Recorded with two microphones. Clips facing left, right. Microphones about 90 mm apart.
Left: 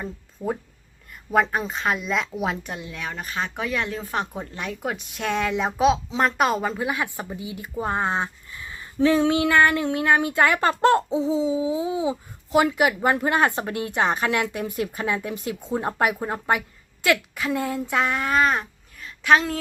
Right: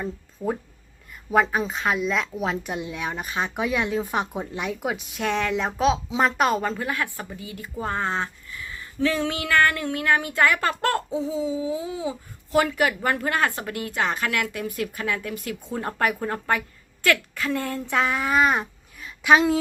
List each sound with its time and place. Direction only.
0.4 s a woman's voice: centre (ahead or behind)
2.7 s speech: 15° right (ahead or behind)